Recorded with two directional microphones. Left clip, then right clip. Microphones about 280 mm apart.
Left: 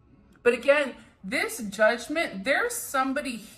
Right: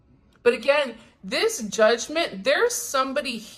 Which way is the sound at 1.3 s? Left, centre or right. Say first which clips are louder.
Right 5 dB; centre.